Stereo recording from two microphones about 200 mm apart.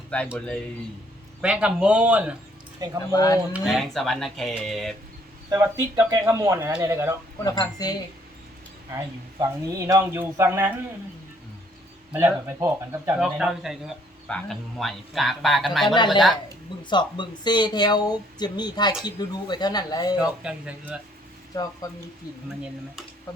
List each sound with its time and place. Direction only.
0.3 s speech: 5° left (ahead or behind)
3.1 s speech: 20° left (ahead or behind)
3.5 s speech: centre (ahead or behind)
5.5 s speech: 15° right (ahead or behind)
7.4 s speech: 20° left (ahead or behind)
9.4 s speech: 15° right (ahead or behind)
12.1 s speech: 10° right (ahead or behind)
16.9 s speech: 25° left (ahead or behind)
20.1 s speech: 5° right (ahead or behind)
21.5 s speech: 20° left (ahead or behind)